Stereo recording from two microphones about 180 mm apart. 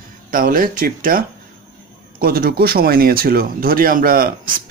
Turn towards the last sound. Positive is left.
turn(degrees=-55)  # may be behind; listen again after turning